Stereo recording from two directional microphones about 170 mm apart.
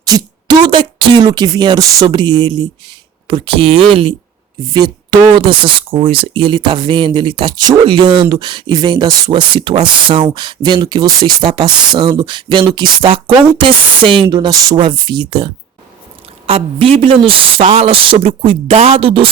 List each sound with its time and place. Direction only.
0.0 s speech: 25° right (ahead or behind)
16.5 s speech: 35° right (ahead or behind)